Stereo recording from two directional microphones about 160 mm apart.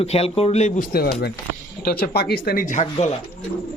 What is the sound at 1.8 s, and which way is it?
Speech, 70° left (ahead or behind).